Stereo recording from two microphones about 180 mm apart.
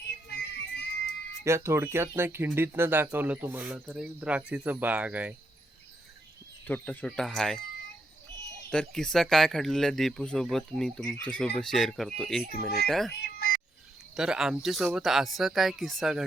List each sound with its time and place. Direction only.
0.3 s music: 65° left (ahead or behind)
1.5 s speech: 15° right (ahead or behind)
6.7 s speech: 10° left (ahead or behind)
8.7 s speech: 5° left (ahead or behind)
12.5 s speech: 60° left (ahead or behind)
12.9 s speech: centre (ahead or behind)
13.3 s cat: 55° left (ahead or behind)
14.2 s speech: 5° right (ahead or behind)